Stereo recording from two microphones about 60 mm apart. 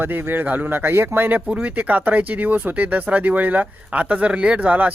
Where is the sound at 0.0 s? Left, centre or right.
Right.